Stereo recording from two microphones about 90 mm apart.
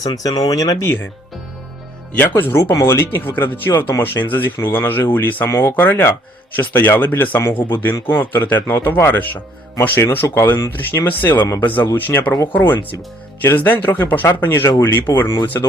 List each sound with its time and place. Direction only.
0.0 s speech: 45° left (ahead or behind)
2.1 s speech: 25° left (ahead or behind)